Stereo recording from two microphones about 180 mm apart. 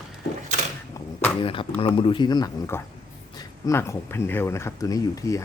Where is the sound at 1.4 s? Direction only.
30° left (ahead or behind).